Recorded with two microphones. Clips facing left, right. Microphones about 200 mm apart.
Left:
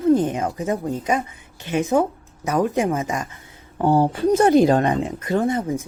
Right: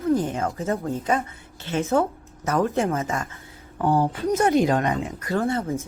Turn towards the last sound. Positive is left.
turn(degrees=15)  # may be behind; listen again after turning